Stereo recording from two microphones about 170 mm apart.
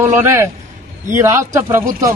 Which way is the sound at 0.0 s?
15° right (ahead or behind).